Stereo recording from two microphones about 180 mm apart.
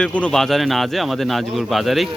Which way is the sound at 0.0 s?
5° left (ahead or behind).